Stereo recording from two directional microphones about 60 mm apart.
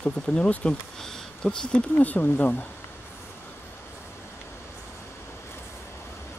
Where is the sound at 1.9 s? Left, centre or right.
Left.